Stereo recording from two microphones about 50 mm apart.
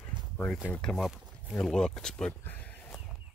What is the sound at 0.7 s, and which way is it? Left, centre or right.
Speech, centre.